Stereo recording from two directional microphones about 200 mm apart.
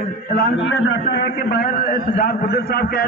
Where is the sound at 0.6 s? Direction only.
75° left (ahead or behind).